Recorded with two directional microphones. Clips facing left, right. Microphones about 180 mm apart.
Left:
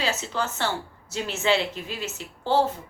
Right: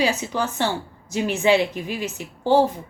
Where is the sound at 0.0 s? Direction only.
15° right (ahead or behind).